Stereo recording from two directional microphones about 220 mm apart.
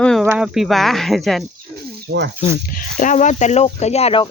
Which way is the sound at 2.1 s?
50° right (ahead or behind).